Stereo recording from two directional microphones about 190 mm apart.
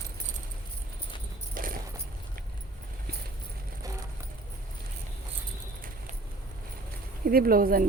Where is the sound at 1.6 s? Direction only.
45° right (ahead or behind).